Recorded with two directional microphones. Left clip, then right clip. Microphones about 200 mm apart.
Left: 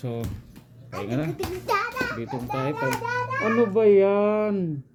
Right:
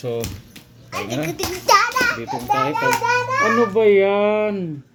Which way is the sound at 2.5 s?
5° left (ahead or behind).